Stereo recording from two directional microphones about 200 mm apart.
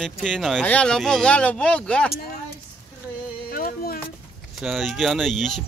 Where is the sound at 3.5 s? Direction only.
50° left (ahead or behind).